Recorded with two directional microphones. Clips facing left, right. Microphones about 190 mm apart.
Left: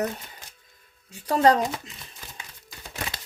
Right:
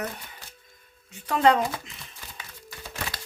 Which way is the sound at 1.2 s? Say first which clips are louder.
Left 1 dB; 35° left (ahead or behind).